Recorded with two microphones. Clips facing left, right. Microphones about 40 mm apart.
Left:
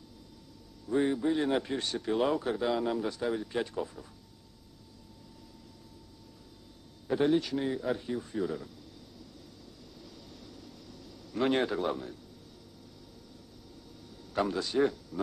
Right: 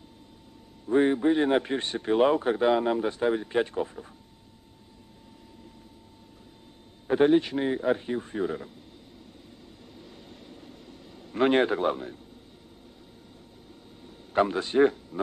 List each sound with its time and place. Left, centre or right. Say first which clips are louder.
0.8 s a man's voice: right 6 dB; right
7.1 s a man's voice: right 6 dB; right
10.4 s a sound: right 3 dB; right
14.3 s a man's voice: right 6 dB; right